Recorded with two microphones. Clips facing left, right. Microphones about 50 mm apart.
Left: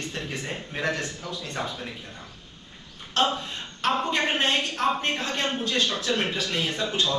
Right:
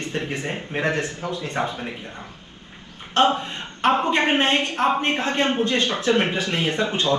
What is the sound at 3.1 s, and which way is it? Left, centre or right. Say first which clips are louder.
A woman's voice: right 6 dB; right.